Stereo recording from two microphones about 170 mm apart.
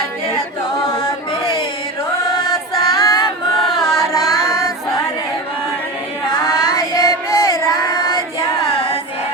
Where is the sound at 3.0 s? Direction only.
20° left (ahead or behind).